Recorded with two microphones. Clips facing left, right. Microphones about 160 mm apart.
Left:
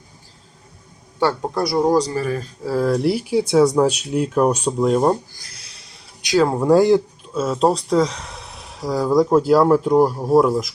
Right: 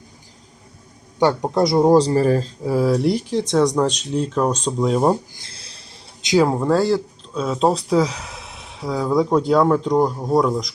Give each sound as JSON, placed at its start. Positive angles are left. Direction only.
{"t": 1.2, "sound": "speech", "side_deg": -20}
{"t": 2.6, "sound": "speech", "side_deg": -10}
{"t": 2.9, "sound": "speech", "side_deg": 5}
{"t": 5.4, "sound": "a sound", "side_deg": -30}
{"t": 6.2, "sound": "speech", "side_deg": -15}
{"t": 6.7, "sound": "speech", "side_deg": 15}
{"t": 7.3, "sound": "speech", "side_deg": 0}